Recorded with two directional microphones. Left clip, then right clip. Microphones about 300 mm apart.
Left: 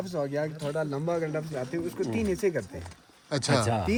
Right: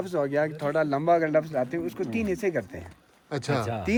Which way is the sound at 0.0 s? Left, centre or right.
Right.